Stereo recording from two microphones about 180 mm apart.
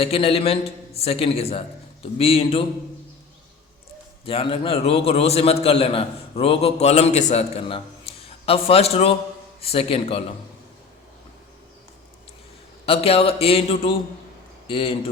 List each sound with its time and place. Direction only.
0.0 s a man's voice: 30° left (ahead or behind)
4.3 s a man's voice: 30° left (ahead or behind)
12.8 s a man's voice: 35° left (ahead or behind)